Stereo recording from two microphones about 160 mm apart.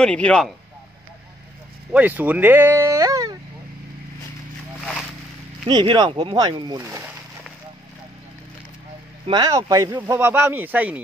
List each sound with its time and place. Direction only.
0.0 s speech: 5° left (ahead or behind)
1.9 s speech: 10° right (ahead or behind)
5.7 s speech: 25° right (ahead or behind)
9.3 s speech: 25° right (ahead or behind)